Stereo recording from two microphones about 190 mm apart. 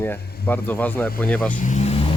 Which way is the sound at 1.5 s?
40° left (ahead or behind).